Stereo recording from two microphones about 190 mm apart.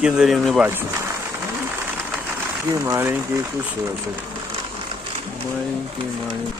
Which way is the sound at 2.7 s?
15° right (ahead or behind).